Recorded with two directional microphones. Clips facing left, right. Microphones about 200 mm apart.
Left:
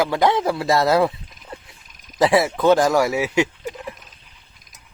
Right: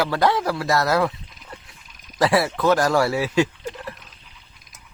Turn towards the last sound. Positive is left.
turn(degrees=15)  # may be behind; listen again after turning